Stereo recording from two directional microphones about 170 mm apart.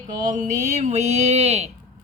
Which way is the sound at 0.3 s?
45° right (ahead or behind).